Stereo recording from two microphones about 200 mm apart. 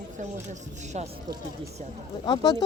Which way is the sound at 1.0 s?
35° right (ahead or behind).